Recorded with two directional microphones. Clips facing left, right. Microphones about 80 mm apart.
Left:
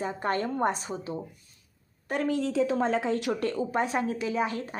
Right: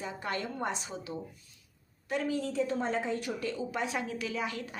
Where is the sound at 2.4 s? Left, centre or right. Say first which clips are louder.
Left 6 dB; left.